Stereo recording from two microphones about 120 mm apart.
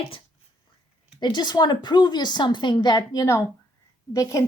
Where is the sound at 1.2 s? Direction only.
35° left (ahead or behind).